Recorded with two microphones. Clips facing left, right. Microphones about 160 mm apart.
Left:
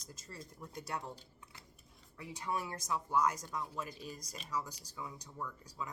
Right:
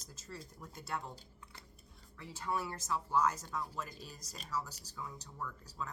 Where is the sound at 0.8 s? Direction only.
20° left (ahead or behind).